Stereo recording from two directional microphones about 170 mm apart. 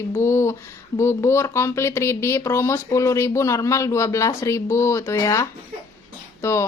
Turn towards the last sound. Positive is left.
turn(degrees=15)  # may be behind; listen again after turning